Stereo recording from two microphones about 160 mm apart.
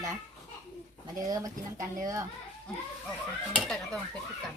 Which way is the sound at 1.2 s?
20° right (ahead or behind).